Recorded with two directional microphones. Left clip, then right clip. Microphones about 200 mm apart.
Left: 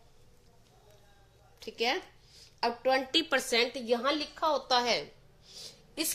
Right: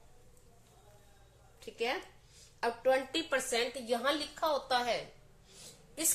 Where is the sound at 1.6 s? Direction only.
45° left (ahead or behind).